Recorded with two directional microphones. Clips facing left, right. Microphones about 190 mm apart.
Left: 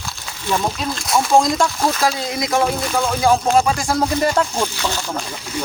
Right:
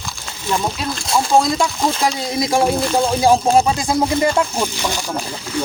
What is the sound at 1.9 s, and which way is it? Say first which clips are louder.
Speech: even; 25° right (ahead or behind).